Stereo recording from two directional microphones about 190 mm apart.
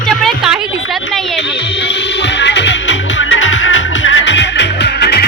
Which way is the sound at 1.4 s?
65° left (ahead or behind).